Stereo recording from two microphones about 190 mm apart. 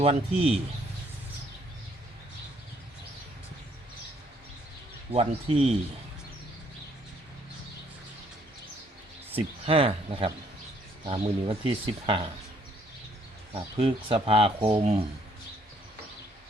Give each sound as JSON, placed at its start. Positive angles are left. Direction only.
{"t": 0.0, "sound": "speech", "side_deg": -30}
{"t": 5.1, "sound": "speech", "side_deg": -30}
{"t": 9.3, "sound": "speech", "side_deg": -30}
{"t": 13.5, "sound": "speech", "side_deg": -30}